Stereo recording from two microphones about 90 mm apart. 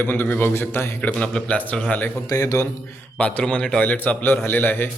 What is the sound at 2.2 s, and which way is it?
Speech, 35° left (ahead or behind).